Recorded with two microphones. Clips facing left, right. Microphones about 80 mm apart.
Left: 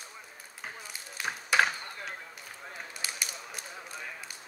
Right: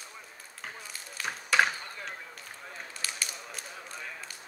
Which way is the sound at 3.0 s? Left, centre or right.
Centre.